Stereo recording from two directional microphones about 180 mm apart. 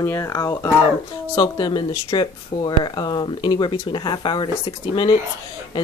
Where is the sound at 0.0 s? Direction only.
15° left (ahead or behind).